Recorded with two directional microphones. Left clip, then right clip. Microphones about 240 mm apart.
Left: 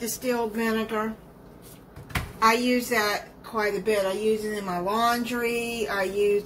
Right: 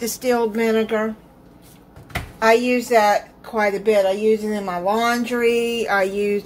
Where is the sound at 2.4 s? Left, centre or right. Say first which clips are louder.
Right 6 dB; right.